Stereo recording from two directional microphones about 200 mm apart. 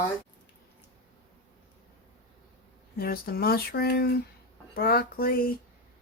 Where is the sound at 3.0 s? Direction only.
50° left (ahead or behind).